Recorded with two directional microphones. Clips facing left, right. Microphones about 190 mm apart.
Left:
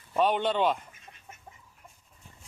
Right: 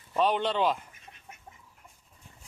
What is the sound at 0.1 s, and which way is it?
Speech, centre (ahead or behind).